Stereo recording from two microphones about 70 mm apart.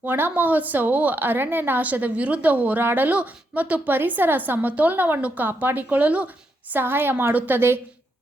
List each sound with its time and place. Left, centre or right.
0.0 s a woman's voice: right